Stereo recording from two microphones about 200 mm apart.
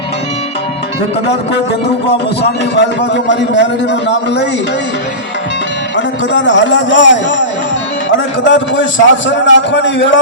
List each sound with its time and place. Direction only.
2.0 s a man's voice: 55° left (ahead or behind)
6.3 s a man's voice: 65° left (ahead or behind)
8.4 s a man's voice: 65° left (ahead or behind)